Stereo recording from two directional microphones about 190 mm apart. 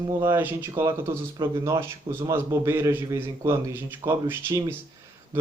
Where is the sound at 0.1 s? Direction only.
15° right (ahead or behind).